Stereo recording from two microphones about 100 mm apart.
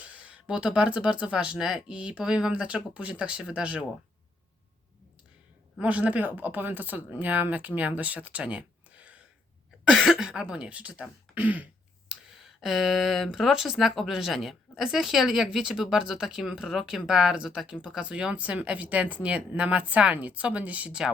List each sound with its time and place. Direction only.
0.0 s speech: 15° right (ahead or behind)
5.8 s speech: 15° right (ahead or behind)
9.9 s speech: centre (ahead or behind)
11.3 s throat clearing: 15° right (ahead or behind)
12.4 s speech: 5° right (ahead or behind)